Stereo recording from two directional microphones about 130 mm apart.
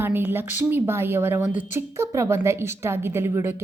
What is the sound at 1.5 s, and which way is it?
Speech, 80° left.